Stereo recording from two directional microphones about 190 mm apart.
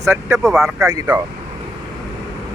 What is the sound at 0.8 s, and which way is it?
Speech, 15° right (ahead or behind).